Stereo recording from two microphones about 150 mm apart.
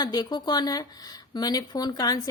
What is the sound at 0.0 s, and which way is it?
A woman's voice, 25° left (ahead or behind).